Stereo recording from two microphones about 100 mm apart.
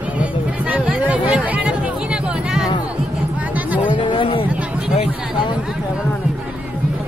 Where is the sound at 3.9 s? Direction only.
55° left (ahead or behind).